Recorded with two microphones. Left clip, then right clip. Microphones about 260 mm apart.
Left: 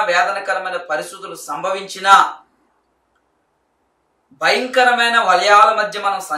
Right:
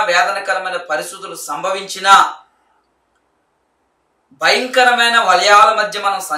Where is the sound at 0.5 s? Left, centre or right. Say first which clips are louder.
Right 2 dB; centre.